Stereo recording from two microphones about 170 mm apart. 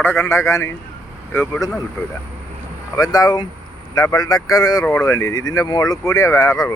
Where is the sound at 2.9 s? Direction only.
20° left (ahead or behind).